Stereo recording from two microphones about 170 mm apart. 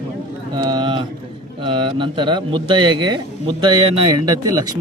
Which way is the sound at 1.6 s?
30° right (ahead or behind).